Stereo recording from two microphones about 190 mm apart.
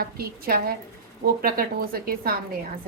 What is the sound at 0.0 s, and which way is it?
A woman's voice, 55° right (ahead or behind).